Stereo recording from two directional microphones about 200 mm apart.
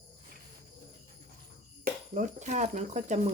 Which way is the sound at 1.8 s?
40° right (ahead or behind).